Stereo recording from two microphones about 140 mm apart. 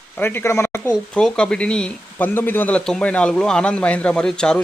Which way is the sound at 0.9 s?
5° left (ahead or behind).